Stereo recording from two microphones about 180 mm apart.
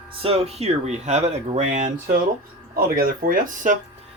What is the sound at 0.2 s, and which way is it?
Speech, 35° right (ahead or behind).